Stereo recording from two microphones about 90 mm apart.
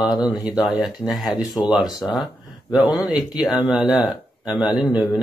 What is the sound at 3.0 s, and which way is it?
Speech, 5° right (ahead or behind).